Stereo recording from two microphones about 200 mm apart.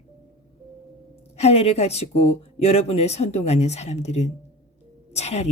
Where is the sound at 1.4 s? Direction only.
30° left (ahead or behind).